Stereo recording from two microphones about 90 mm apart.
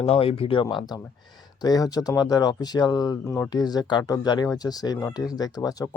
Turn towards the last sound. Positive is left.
turn(degrees=45)  # may be behind; listen again after turning